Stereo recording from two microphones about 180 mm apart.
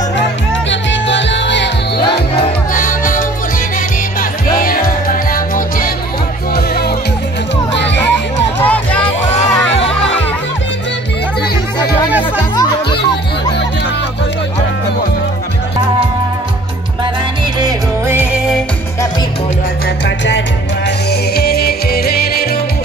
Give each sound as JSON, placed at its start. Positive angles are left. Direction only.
{"t": 0.7, "sound": "music", "side_deg": 80}
{"t": 2.7, "sound": "music", "side_deg": 50}
{"t": 7.7, "sound": "music", "side_deg": 75}
{"t": 8.6, "sound": "music", "side_deg": 10}
{"t": 17.6, "sound": "music", "side_deg": -15}
{"t": 21.4, "sound": "music", "side_deg": 60}